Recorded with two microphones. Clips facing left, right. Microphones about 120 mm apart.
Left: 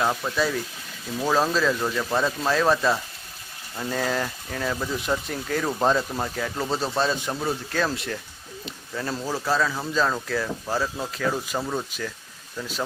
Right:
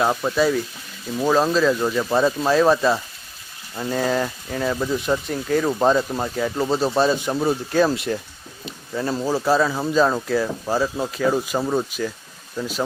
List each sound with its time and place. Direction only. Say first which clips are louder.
0.0 s speech: right 4 dB; 20° right (ahead or behind)
0.3 s speech: right 6 dB; 5° right (ahead or behind); by 11.9 s 25° right (ahead or behind)
12.5 s speech: right 6 dB; 5° right (ahead or behind)